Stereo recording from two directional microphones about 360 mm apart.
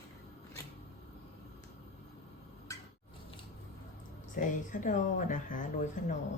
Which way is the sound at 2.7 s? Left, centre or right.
Centre.